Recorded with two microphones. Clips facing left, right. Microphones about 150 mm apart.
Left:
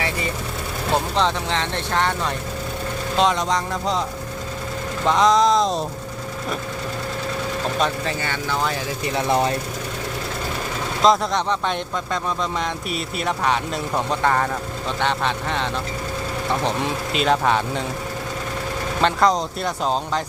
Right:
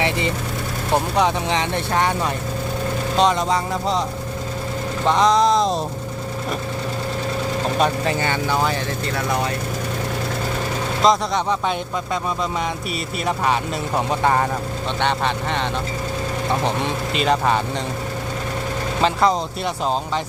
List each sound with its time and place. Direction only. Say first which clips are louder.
1.1 s speech: right 2 dB; 15° right (ahead or behind)
5.0 s speech: even; centre (ahead or behind)
7.8 s speech: right 5 dB; 15° right (ahead or behind)
9.3 s speech: left 4 dB; 30° left (ahead or behind)
11.0 s speech: even; 5° right (ahead or behind)
12.9 s speech: right 1 dB; 5° right (ahead or behind)
19.0 s speech: even; 5° right (ahead or behind)